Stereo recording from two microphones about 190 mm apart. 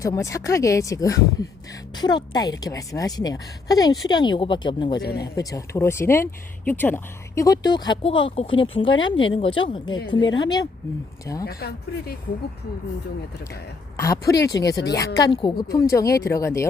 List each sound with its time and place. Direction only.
0.0 s a woman's voice: 15° left (ahead or behind)
5.0 s speech: 60° left (ahead or behind)
5.3 s a woman's voice: 20° left (ahead or behind)
10.2 s speech: 80° left
11.4 s speech: 55° left (ahead or behind)
13.9 s a woman's voice: 15° left (ahead or behind)